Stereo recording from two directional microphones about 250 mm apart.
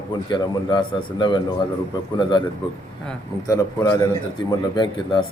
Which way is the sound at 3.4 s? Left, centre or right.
Centre.